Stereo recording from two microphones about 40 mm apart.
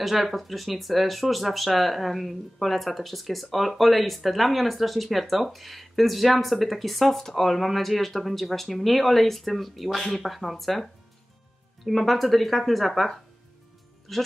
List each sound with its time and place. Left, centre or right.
0.0 s speech: centre